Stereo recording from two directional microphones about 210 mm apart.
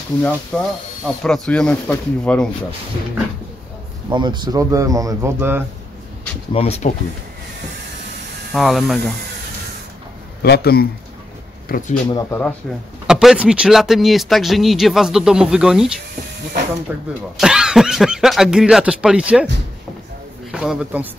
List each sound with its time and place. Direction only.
0.5 s speech: 5° left (ahead or behind)
4.1 s speech: 20° right (ahead or behind)
6.5 s speech: 30° left (ahead or behind)
8.5 s speech: centre (ahead or behind)
10.4 s speech: 50° left (ahead or behind)
12.1 s speech: 15° left (ahead or behind)
13.0 s speech: 5° right (ahead or behind)
20.5 s speech: 5° right (ahead or behind)